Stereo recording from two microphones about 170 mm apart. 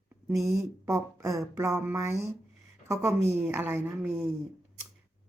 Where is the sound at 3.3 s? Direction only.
15° right (ahead or behind).